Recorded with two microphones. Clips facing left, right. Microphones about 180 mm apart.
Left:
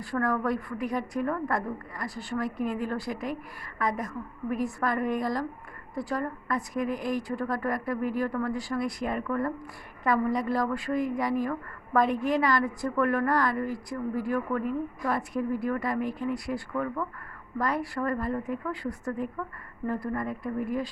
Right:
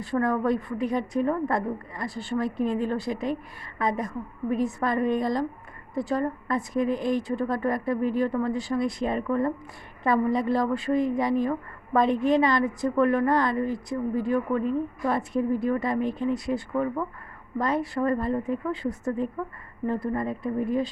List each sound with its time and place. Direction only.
0.0 s a woman's voice: 25° right (ahead or behind)